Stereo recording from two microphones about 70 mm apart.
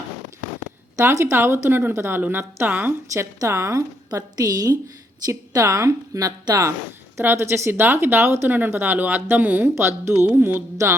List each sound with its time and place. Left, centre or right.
0.9 s a woman's voice: right
3.1 s a woman's voice: right
4.1 s a woman's voice: right
7.2 s a woman's voice: right
8.4 s a woman's voice: right
10.8 s a woman's voice: right